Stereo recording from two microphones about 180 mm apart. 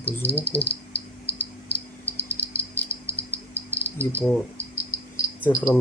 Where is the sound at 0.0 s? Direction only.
10° left (ahead or behind).